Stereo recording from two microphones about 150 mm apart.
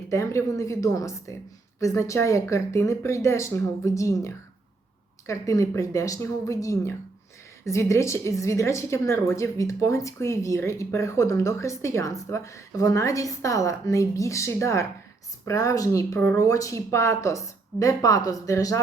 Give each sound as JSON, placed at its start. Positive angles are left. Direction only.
{"t": 0.1, "sound": "a woman's voice", "side_deg": 20}